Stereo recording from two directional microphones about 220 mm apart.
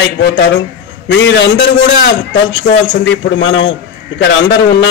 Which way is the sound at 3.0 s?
55° left (ahead or behind).